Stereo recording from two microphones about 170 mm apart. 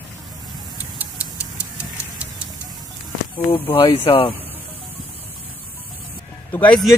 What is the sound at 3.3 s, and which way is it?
Speech, 30° left (ahead or behind).